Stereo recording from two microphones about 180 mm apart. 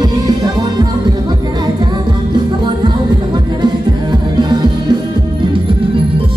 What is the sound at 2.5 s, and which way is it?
Music, 25° right (ahead or behind).